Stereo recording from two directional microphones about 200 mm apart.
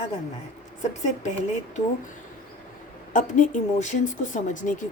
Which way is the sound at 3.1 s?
40° left (ahead or behind).